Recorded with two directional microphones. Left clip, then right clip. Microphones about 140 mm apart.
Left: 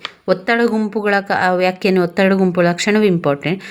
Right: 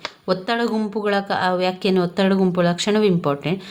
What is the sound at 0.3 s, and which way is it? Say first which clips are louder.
Speech: left 6 dB; 25° left (ahead or behind).